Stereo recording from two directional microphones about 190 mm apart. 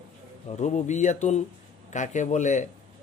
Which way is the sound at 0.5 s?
35° left (ahead or behind).